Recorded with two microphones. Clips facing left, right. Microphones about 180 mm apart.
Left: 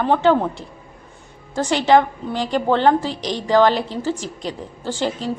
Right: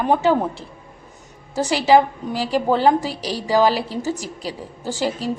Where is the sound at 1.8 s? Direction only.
5° right (ahead or behind).